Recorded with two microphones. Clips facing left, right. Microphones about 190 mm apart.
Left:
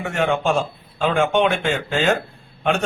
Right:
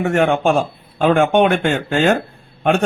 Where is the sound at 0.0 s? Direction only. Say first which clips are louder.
Right 5 dB; 50° right (ahead or behind).